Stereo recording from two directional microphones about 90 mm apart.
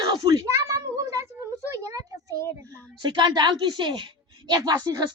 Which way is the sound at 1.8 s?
40° right (ahead or behind).